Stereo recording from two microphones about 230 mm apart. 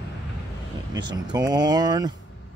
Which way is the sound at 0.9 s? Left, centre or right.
Centre.